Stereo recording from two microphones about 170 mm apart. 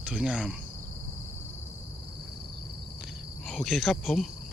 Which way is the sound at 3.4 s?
Centre (ahead or behind).